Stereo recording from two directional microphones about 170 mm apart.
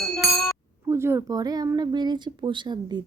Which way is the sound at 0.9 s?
15° right (ahead or behind).